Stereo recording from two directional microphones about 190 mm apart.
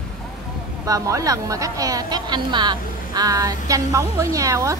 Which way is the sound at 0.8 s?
15° right (ahead or behind).